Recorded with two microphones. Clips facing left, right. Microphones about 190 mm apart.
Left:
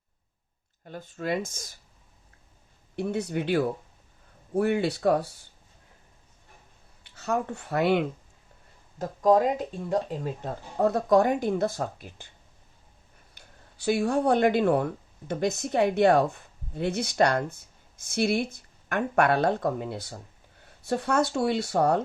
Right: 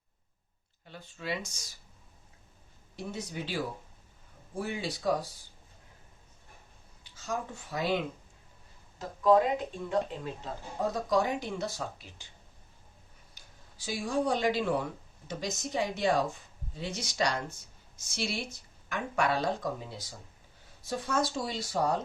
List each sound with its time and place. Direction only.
0.9 s speech: 50° left (ahead or behind)
2.9 s speech: 60° left (ahead or behind)
7.0 s speech: 65° left (ahead or behind)
9.0 s speech: 40° left (ahead or behind)
10.8 s speech: 60° left (ahead or behind)
13.3 s speech: 60° left (ahead or behind)